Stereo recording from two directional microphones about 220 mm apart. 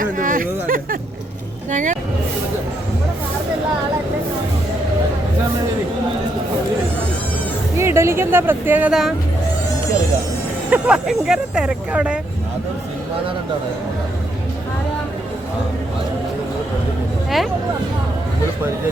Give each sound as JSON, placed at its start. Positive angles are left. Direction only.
{"t": 0.0, "sound": "a sound", "side_deg": -40}
{"t": 1.7, "sound": "speech", "side_deg": -35}
{"t": 7.8, "sound": "speech", "side_deg": -10}
{"t": 10.7, "sound": "speech", "side_deg": -5}